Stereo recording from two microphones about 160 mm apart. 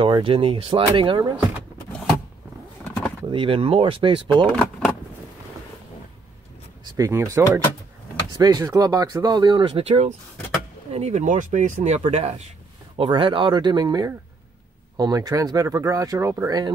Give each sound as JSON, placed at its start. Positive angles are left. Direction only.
{"t": 0.0, "sound": "speech", "side_deg": -30}
{"t": 2.8, "sound": "a sound", "side_deg": 10}
{"t": 3.3, "sound": "speech", "side_deg": -35}
{"t": 6.8, "sound": "speech", "side_deg": -20}